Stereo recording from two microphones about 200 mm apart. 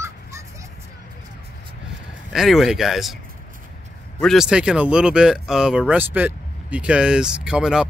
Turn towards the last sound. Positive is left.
turn(degrees=-5)  # may be behind; listen again after turning